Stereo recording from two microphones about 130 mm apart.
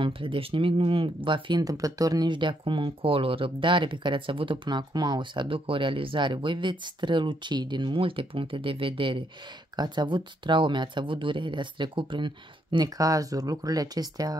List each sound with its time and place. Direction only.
0.0 s speech: 40° right (ahead or behind)
12.7 s speech: 30° right (ahead or behind)